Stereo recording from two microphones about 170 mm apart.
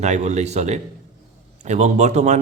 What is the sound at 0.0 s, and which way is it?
A man's voice, 45° right (ahead or behind).